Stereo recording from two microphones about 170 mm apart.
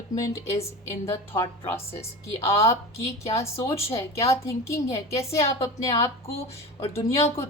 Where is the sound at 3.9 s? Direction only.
15° left (ahead or behind).